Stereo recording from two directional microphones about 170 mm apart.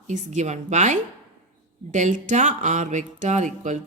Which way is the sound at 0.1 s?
45° right (ahead or behind).